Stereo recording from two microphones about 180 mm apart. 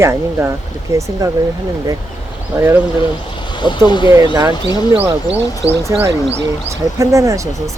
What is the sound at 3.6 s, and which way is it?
Speech, 25° left (ahead or behind).